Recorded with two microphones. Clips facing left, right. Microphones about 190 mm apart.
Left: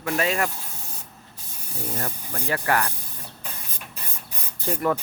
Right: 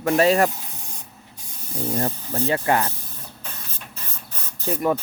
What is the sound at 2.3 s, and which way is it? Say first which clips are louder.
Speech: right 3 dB; 25° right (ahead or behind).